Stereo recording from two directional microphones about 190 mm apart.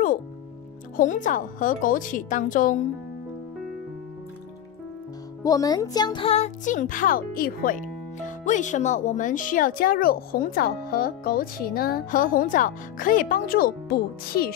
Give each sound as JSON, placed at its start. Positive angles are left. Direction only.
{"t": 0.9, "sound": "speech", "side_deg": 40}
{"t": 5.4, "sound": "speech", "side_deg": 20}